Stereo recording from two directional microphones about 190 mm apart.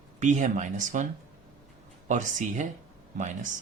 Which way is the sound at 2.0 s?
40° right (ahead or behind).